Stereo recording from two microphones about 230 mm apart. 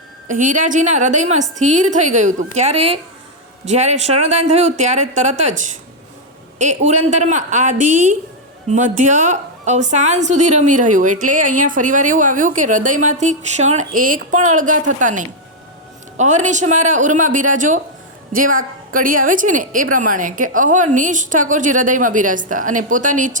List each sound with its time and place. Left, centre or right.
0.3 s a woman's voice: right
6.6 s a woman's voice: right